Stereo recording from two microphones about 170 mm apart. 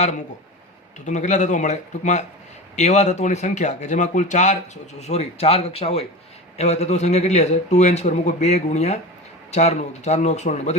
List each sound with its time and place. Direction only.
1.0 s a man's voice: 45° left (ahead or behind)